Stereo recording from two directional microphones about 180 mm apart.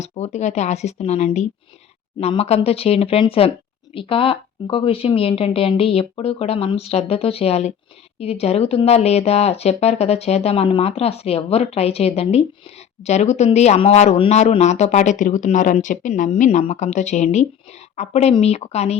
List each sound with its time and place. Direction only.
0.0 s speech: 40° left (ahead or behind)